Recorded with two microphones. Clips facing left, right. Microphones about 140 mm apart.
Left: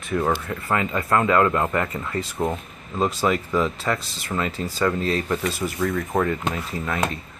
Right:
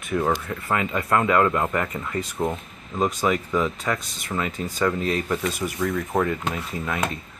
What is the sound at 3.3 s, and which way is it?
Speech, 5° right (ahead or behind).